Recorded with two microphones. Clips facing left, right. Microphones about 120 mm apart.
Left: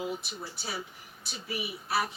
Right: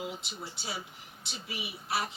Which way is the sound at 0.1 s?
25° right (ahead or behind).